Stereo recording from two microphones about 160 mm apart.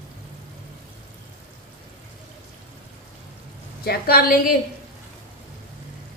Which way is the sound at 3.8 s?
70° left (ahead or behind).